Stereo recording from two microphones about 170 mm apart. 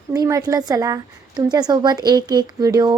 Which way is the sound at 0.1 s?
20° right (ahead or behind).